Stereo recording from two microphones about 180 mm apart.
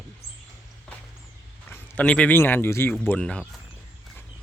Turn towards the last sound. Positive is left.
turn(degrees=5)  # may be behind; listen again after turning